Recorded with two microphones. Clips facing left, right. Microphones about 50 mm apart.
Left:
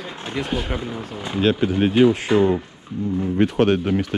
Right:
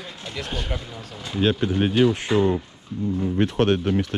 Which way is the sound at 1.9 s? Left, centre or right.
Left.